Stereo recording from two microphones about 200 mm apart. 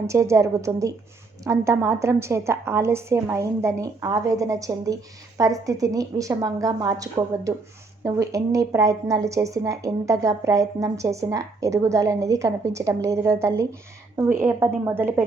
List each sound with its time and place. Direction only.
0.1 s speech: 15° right (ahead or behind)